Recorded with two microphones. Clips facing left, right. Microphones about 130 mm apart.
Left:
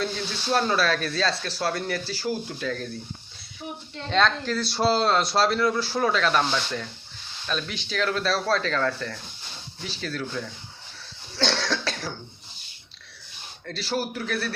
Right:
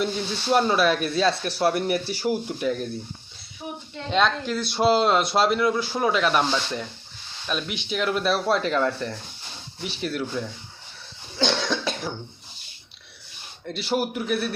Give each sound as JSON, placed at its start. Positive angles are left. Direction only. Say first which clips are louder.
{"t": 0.0, "sound": "speech", "louder": "right 3 dB", "side_deg": -15}
{"t": 4.1, "sound": "speech", "louder": "right 1 dB", "side_deg": -10}
{"t": 11.3, "sound": "cough", "louder": "right 2 dB", "side_deg": -15}
{"t": 13.7, "sound": "speech", "louder": "right 3 dB", "side_deg": -15}